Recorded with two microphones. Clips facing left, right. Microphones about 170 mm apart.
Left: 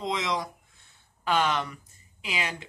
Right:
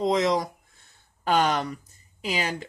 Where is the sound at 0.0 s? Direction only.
40° right (ahead or behind).